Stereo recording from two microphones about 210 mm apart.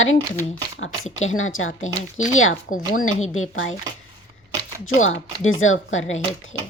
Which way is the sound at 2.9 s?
80° left.